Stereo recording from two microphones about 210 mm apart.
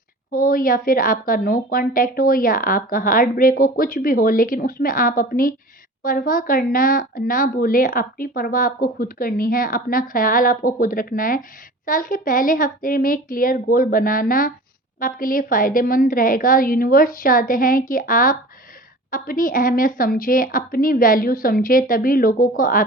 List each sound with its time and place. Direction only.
0.3 s a woman's voice: 40° left (ahead or behind)